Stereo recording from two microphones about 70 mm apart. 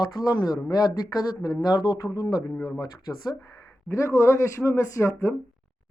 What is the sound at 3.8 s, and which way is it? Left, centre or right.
Speech, left.